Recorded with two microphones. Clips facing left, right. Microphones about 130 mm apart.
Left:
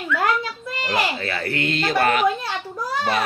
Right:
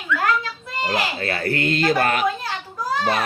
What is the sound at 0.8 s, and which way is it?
Speech, 45° right (ahead or behind).